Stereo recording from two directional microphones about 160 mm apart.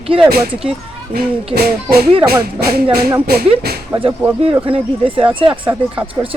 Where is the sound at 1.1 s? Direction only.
70° right (ahead or behind).